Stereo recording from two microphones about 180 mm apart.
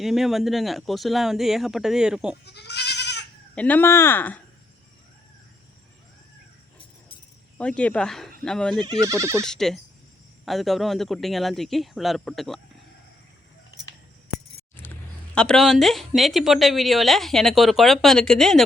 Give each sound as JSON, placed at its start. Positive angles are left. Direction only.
{"t": 0.0, "sound": "a woman's voice", "side_deg": 0}
{"t": 2.4, "sound": "goat", "side_deg": 65}
{"t": 3.5, "sound": "speech", "side_deg": 10}
{"t": 7.6, "sound": "a woman's voice", "side_deg": 5}
{"t": 8.9, "sound": "speech", "side_deg": -20}
{"t": 9.5, "sound": "a woman's voice", "side_deg": 0}
{"t": 15.4, "sound": "a woman's voice", "side_deg": 5}